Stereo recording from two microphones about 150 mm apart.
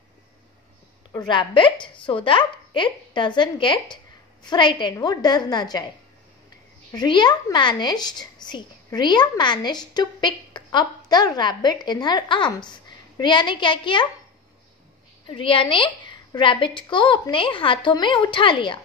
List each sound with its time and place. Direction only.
1.1 s a woman's voice: 30° left (ahead or behind)
6.9 s a woman's voice: 30° left (ahead or behind)
15.2 s a woman's voice: 35° left (ahead or behind)